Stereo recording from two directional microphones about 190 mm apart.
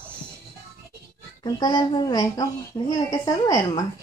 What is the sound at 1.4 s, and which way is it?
A woman's voice, 20° left (ahead or behind).